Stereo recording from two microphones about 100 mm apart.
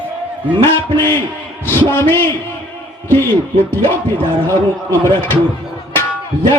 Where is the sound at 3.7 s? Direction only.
20° left (ahead or behind).